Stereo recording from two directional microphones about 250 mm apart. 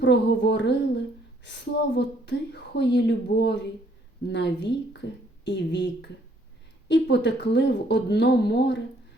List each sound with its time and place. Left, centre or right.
0.0 s a woman's voice: left